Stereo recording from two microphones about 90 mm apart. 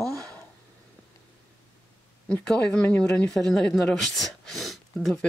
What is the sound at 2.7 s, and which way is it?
Speech, 10° left (ahead or behind).